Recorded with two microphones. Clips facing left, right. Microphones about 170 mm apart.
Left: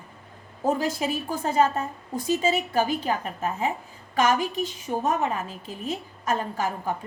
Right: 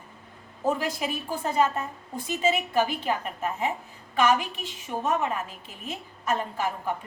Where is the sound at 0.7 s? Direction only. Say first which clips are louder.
Left 3 dB; 40° left (ahead or behind).